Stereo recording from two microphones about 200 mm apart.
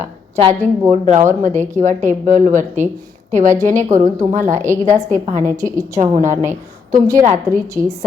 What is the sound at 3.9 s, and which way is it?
Speech, 15° right (ahead or behind).